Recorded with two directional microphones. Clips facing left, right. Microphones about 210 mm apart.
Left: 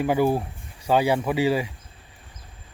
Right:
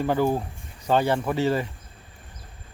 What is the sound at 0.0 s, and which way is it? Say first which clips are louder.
Speech: left 2 dB; 10° left (ahead or behind).